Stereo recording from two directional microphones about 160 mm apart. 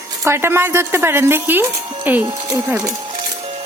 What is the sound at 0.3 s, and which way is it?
Speech, 15° right (ahead or behind).